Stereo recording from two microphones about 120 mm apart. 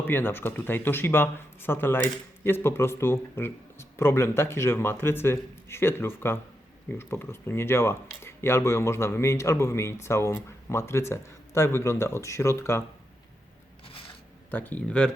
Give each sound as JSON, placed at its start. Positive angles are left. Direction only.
{"t": 0.1, "sound": "speech", "side_deg": 20}
{"t": 14.5, "sound": "speech", "side_deg": 15}